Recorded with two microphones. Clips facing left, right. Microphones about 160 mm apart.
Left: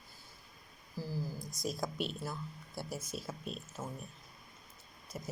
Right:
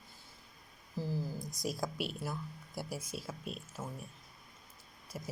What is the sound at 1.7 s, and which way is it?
Speech, 5° right (ahead or behind).